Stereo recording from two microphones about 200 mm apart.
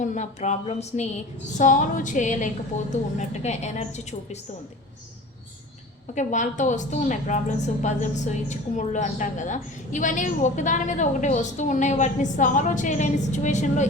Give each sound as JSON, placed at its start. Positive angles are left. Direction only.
{"t": 0.0, "sound": "a woman's voice", "side_deg": 40}
{"t": 6.1, "sound": "a woman's voice", "side_deg": 40}